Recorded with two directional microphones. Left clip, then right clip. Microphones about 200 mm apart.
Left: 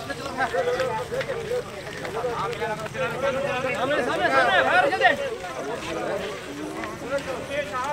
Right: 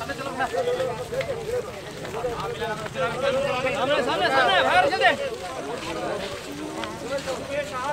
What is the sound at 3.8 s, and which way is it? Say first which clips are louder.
Speech: right 1 dB; 35° right (ahead or behind).